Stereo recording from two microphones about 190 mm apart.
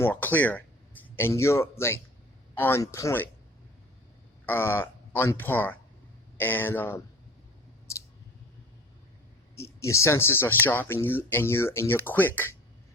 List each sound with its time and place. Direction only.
0.0 s a man's voice: 10° left (ahead or behind)
4.4 s speech: 10° left (ahead or behind)
7.9 s clicking: 15° left (ahead or behind)
9.8 s speech: 15° left (ahead or behind)